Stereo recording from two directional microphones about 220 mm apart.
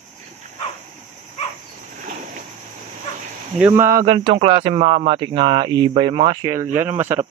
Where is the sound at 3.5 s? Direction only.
10° right (ahead or behind).